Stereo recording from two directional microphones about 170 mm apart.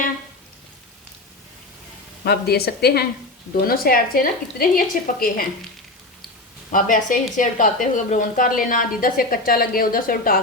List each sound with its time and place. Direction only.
2.2 s a woman's voice: 70° left (ahead or behind)
6.7 s a woman's voice: 50° left (ahead or behind)